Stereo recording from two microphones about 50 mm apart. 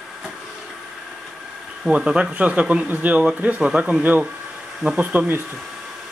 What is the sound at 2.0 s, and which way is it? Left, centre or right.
Speech, centre.